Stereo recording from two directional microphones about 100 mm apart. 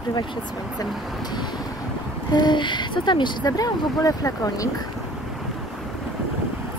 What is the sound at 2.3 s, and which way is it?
Speech, 50° left (ahead or behind).